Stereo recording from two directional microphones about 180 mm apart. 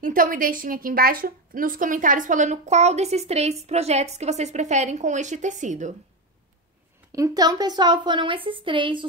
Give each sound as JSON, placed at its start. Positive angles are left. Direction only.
{"t": 0.0, "sound": "a woman's voice", "side_deg": -50}
{"t": 7.1, "sound": "a woman's voice", "side_deg": -20}